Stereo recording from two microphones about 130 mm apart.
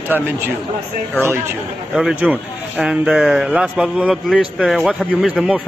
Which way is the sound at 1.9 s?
Centre (ahead or behind).